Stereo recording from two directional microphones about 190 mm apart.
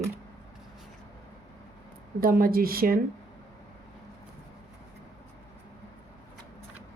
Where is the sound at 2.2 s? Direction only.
50° right (ahead or behind).